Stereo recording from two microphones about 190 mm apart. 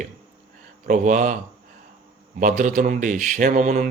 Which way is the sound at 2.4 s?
40° right (ahead or behind).